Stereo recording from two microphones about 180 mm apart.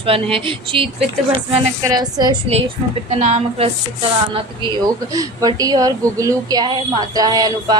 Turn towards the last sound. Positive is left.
turn(degrees=-20)  # may be behind; listen again after turning